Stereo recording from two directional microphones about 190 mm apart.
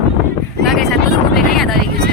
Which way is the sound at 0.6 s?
Centre (ahead or behind).